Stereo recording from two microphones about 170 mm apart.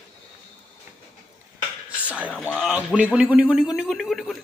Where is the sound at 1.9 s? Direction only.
10° right (ahead or behind).